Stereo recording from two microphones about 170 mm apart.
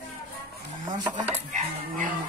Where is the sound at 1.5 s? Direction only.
50° right (ahead or behind).